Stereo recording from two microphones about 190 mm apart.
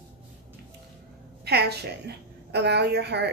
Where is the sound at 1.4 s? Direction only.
60° right (ahead or behind).